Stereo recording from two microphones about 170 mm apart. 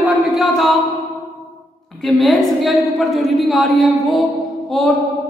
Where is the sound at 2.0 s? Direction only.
Centre (ahead or behind).